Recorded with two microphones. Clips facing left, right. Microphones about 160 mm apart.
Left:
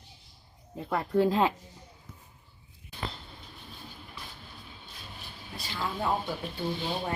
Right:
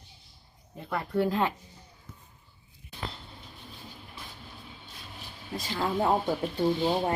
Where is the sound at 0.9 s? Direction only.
20° left (ahead or behind).